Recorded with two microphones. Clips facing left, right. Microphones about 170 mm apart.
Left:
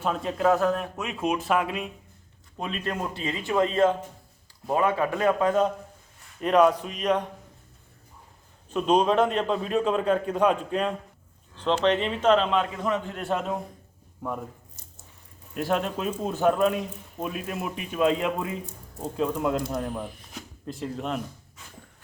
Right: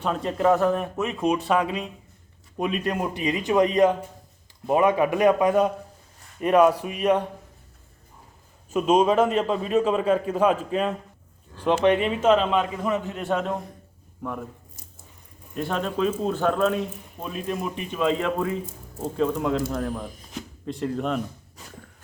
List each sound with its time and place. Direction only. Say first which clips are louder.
0.0 s a man's voice: right 2 dB; centre (ahead or behind)
2.6 s a man's voice: right 5 dB; 15° right (ahead or behind)
8.7 s a man's voice: right 2 dB; 5° right (ahead or behind)
15.5 s a man's voice: even; 5° left (ahead or behind)
20.7 s a man's voice: right 4 dB; centre (ahead or behind)